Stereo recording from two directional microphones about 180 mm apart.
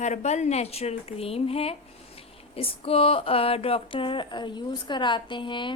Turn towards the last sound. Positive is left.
turn(degrees=25)  # may be behind; listen again after turning